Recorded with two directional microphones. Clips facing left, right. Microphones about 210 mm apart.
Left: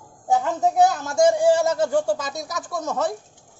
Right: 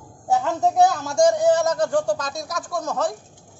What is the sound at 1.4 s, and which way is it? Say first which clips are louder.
Speech: even; 30° left (ahead or behind).